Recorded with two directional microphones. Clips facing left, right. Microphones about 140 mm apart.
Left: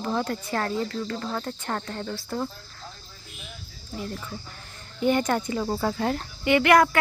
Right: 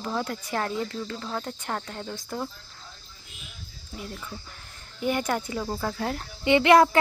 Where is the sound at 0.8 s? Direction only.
15° right (ahead or behind).